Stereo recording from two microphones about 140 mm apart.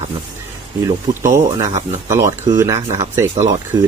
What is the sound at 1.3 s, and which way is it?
Speech, 25° right (ahead or behind).